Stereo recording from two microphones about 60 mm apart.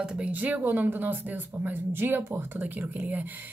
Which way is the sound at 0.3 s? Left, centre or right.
Right.